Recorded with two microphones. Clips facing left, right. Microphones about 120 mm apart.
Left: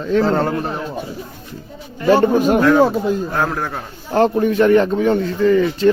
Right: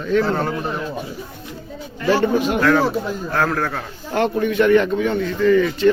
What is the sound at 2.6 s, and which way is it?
Speech, 20° left (ahead or behind).